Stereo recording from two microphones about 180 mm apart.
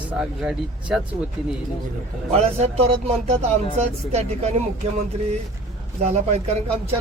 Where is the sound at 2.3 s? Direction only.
35° right (ahead or behind).